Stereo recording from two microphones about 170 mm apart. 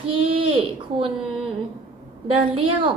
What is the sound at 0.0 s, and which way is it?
Speech, 35° right (ahead or behind).